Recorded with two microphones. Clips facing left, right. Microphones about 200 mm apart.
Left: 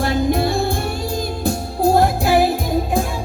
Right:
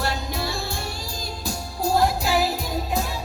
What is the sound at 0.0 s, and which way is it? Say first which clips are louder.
Music: left 10 dB; 50° left (ahead or behind).